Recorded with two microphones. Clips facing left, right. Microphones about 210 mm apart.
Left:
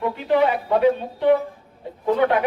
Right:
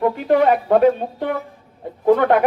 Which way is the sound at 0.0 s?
50° right (ahead or behind).